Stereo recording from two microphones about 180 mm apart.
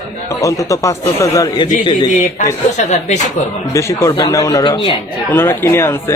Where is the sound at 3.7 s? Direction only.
15° left (ahead or behind).